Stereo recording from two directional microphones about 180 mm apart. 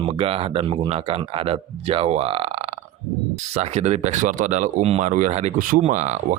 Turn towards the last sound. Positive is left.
turn(degrees=-40)  # may be behind; listen again after turning